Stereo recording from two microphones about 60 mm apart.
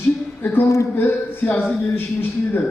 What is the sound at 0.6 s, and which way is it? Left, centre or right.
Speech, left.